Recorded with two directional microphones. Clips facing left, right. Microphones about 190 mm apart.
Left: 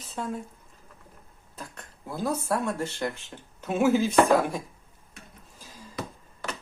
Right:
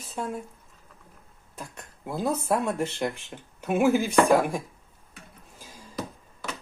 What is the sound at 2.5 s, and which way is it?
Speech, 20° right (ahead or behind).